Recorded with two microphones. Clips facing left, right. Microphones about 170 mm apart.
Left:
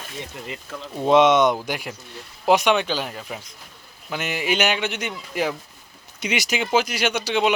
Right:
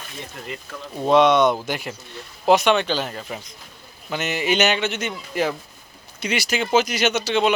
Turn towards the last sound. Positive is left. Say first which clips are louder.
# right 1 dB
turn(degrees=15)  # may be behind; listen again after turning